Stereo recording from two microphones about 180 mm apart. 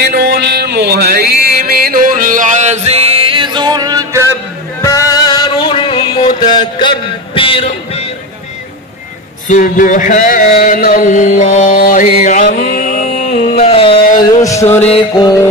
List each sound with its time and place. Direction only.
0.0 s music: 60° right (ahead or behind); by 4.3 s 20° right (ahead or behind)
4.8 s music: 20° left (ahead or behind); by 8.1 s 35° left (ahead or behind)
9.5 s a sound: 45° left (ahead or behind)
14.4 s music: 15° left (ahead or behind)
14.8 s music: 30° left (ahead or behind)